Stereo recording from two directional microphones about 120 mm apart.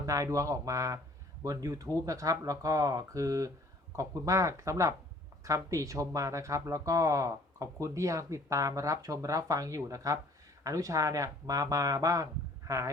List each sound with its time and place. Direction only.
0.0 s speech: 25° right (ahead or behind)